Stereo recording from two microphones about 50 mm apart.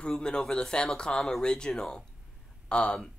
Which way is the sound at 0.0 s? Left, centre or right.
Centre.